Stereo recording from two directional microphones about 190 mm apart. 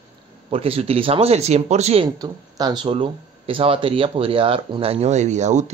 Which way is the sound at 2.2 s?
20° right (ahead or behind).